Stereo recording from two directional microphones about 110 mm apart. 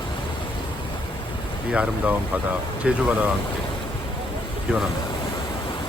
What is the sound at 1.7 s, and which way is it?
Speech, 15° right (ahead or behind).